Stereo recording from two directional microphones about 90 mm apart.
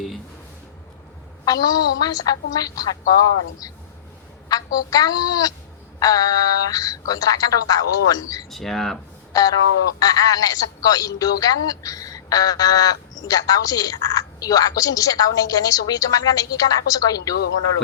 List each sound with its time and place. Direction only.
1.5 s a woman's voice: 45° left (ahead or behind)
4.4 s a woman's voice: 45° left (ahead or behind)
8.4 s speech: 5° left (ahead or behind)
9.3 s a sound: 45° left (ahead or behind)
10.0 s a woman's voice: 45° left (ahead or behind)